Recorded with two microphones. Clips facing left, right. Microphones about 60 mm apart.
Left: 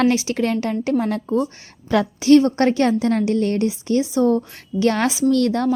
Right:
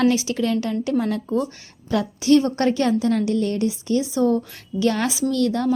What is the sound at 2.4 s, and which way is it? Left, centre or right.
A woman's voice, left.